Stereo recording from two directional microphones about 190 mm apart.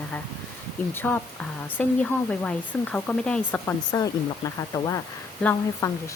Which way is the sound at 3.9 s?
20° left (ahead or behind).